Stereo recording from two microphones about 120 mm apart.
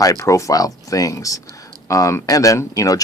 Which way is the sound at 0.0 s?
30° left (ahead or behind).